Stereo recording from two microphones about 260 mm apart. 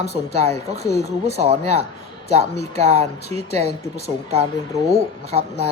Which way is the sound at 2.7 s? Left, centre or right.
Right.